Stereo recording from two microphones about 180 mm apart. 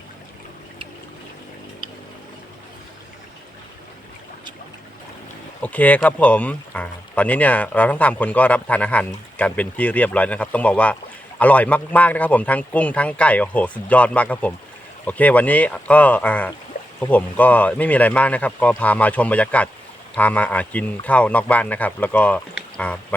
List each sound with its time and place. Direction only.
5.6 s speech: 10° left (ahead or behind)